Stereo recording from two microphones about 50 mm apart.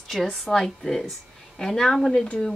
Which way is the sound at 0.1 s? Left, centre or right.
Centre.